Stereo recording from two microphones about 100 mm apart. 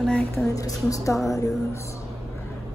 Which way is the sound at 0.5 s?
35° left (ahead or behind).